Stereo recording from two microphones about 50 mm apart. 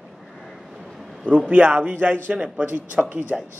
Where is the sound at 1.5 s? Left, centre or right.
Right.